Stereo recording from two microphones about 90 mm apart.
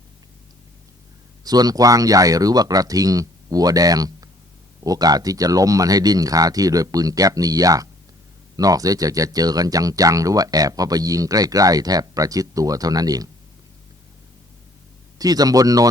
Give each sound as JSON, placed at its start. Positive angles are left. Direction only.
{"t": 1.5, "sound": "speech", "side_deg": -45}
{"t": 15.2, "sound": "speech", "side_deg": -45}